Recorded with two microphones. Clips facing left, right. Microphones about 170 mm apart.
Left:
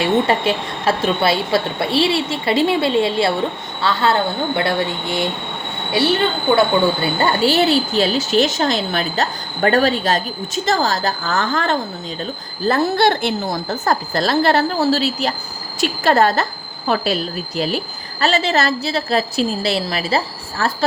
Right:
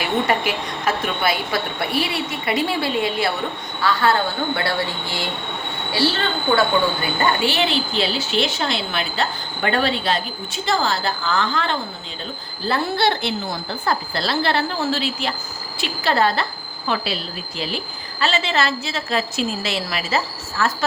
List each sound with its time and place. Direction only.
0.0 s a woman's voice: 25° left (ahead or behind)
7.0 s a woman's voice: 35° left (ahead or behind)